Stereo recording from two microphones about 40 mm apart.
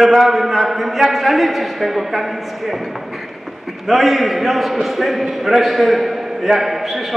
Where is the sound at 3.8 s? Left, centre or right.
Centre.